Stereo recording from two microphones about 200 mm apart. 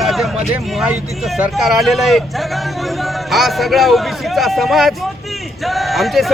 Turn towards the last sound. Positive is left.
turn(degrees=0)  # may be behind; listen again after turning